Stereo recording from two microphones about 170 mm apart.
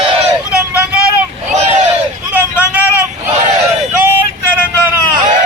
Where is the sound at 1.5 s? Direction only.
40° right (ahead or behind).